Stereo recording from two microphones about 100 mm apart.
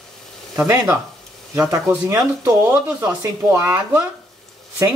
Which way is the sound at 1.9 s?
25° right (ahead or behind).